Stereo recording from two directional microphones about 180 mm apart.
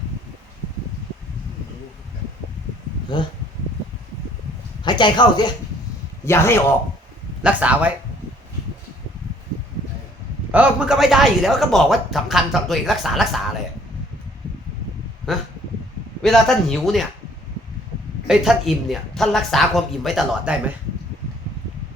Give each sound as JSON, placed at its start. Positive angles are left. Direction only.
{"t": 3.1, "sound": "speech", "side_deg": 25}
{"t": 4.8, "sound": "speech", "side_deg": 25}
{"t": 6.2, "sound": "a man's voice", "side_deg": 15}
{"t": 7.4, "sound": "speech", "side_deg": -10}
{"t": 10.5, "sound": "speech", "side_deg": -5}
{"t": 16.2, "sound": "speech", "side_deg": 0}
{"t": 18.3, "sound": "speech", "side_deg": 0}